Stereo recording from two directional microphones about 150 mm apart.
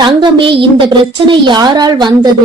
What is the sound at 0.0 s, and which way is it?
A woman's voice, 30° right (ahead or behind).